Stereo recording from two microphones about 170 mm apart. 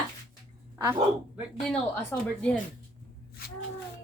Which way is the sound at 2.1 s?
5° left (ahead or behind).